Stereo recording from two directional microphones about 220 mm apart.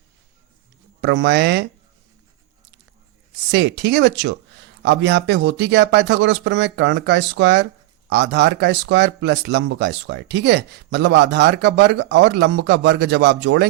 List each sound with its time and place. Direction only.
1.0 s speech: 50° right (ahead or behind)
3.5 s speech: 50° right (ahead or behind)